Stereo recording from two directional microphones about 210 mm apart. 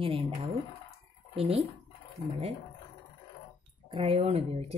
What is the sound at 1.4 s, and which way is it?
Speech, 30° right (ahead or behind).